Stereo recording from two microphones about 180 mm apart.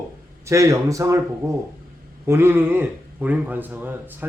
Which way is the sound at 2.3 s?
15° right (ahead or behind).